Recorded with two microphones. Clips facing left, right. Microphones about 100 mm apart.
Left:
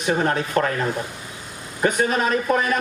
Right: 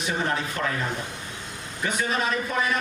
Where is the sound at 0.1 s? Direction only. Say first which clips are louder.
Left 8 dB; 50° left (ahead or behind).